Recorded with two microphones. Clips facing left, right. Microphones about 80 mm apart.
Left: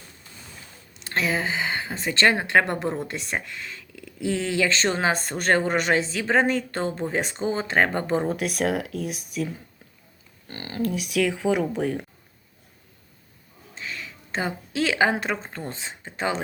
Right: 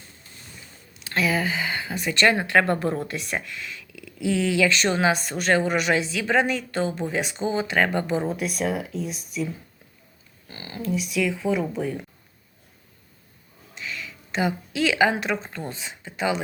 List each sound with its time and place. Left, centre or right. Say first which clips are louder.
1.0 s speech: right 1 dB; left
8.3 s speech: left 1 dB; left
10.5 s speech: left 1 dB; left
13.7 s speech: right 1 dB; left